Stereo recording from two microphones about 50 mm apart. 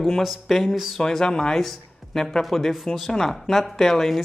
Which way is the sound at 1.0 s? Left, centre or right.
Centre.